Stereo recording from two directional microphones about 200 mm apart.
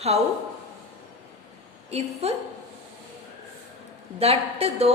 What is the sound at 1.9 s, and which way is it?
Speech, 30° right (ahead or behind).